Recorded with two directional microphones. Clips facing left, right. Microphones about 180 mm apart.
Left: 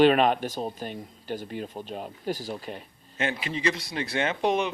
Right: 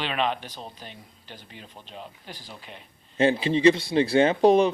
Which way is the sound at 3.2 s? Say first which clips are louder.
Right 9 dB; 30° right (ahead or behind).